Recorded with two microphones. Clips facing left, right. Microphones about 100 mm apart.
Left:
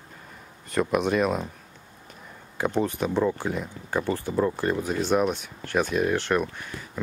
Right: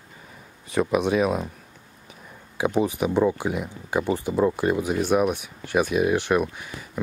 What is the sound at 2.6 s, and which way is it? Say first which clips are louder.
Speech: right 3 dB; 10° right (ahead or behind).